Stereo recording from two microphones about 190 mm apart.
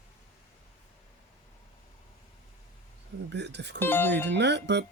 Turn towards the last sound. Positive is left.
turn(degrees=-65)  # may be behind; listen again after turning